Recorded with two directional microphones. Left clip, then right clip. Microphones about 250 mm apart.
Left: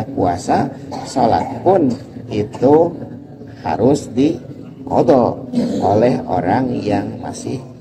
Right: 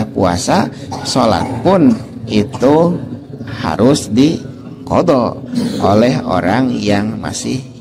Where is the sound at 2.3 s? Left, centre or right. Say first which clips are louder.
Right 5 dB; right.